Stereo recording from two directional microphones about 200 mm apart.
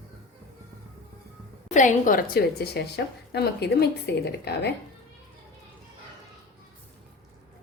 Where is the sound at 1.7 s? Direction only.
40° left (ahead or behind).